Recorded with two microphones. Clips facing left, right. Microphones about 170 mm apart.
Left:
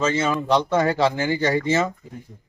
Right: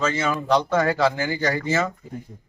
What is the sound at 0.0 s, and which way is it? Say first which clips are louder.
A man's voice: left 2 dB; 25° left (ahead or behind).